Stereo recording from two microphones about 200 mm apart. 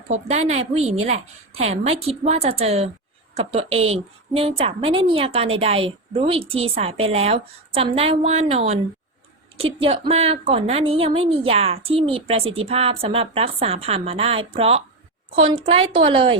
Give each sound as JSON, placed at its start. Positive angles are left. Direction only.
{"t": 0.1, "sound": "a woman's voice", "side_deg": -35}